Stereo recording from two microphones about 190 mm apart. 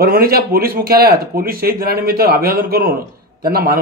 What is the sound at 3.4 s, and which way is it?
Speech, 50° right (ahead or behind).